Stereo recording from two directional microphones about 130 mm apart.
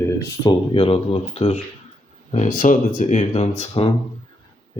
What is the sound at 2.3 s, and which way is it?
Speech, 80° left.